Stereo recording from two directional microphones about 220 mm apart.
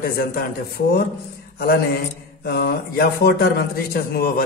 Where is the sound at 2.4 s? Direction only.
45° left (ahead or behind).